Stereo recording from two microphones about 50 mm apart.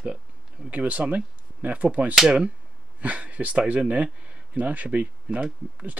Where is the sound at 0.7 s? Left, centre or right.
Right.